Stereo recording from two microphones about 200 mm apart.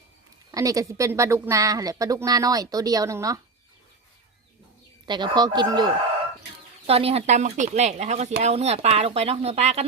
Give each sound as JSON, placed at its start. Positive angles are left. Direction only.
{"t": 0.5, "sound": "a woman's voice", "side_deg": -15}
{"t": 5.0, "sound": "speech", "side_deg": -20}